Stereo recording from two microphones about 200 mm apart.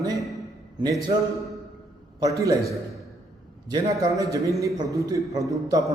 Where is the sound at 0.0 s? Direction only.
15° right (ahead or behind).